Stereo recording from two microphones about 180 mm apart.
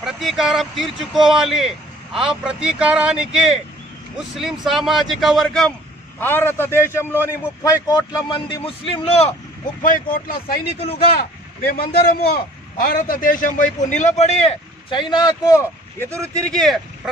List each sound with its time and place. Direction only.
0.0 s a man's voice: centre (ahead or behind); by 9.3 s 35° left (ahead or behind)
9.8 s speech: 50° left (ahead or behind)
10.8 s a man's voice: 35° left (ahead or behind)
11.1 s a man's voice: 60° left (ahead or behind); by 16.1 s 15° left (ahead or behind)
16.3 s speech: 5° left (ahead or behind)